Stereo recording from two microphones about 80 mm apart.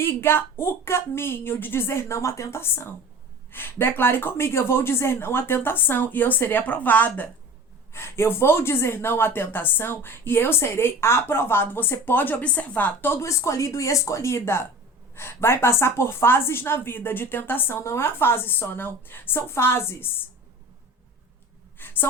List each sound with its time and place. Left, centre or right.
0.0 s speech: left
7.9 s speech: left
13.2 s speech: left
21.8 s gasp: left